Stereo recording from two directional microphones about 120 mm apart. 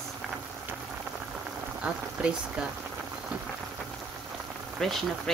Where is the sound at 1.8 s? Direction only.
10° right (ahead or behind).